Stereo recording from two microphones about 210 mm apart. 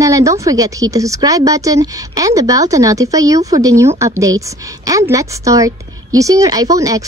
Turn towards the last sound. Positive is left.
turn(degrees=-15)  # may be behind; listen again after turning